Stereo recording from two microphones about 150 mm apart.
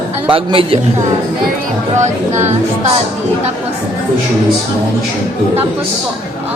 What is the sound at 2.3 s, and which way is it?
Speech, 50° right (ahead or behind).